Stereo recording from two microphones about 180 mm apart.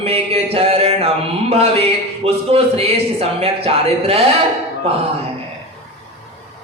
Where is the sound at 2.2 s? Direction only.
35° right (ahead or behind).